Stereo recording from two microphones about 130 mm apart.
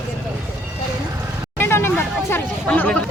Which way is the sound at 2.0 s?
15° left (ahead or behind).